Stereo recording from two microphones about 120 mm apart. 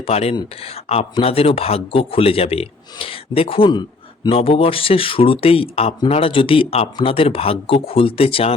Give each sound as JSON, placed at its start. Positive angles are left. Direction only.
{"t": 0.0, "sound": "speech", "side_deg": 60}
{"t": 4.4, "sound": "speech", "side_deg": 50}